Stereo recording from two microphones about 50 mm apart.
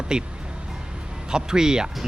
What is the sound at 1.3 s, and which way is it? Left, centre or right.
Speech, centre.